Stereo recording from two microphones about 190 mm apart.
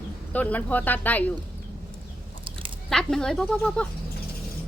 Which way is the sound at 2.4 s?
25° right (ahead or behind).